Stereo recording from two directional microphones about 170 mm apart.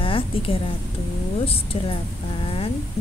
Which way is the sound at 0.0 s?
30° left (ahead or behind).